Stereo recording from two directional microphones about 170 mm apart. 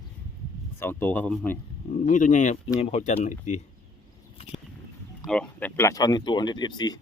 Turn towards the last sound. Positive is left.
turn(degrees=25)  # may be behind; listen again after turning